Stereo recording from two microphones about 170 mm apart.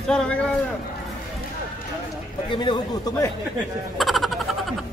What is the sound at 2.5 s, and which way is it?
Speech, 25° left (ahead or behind).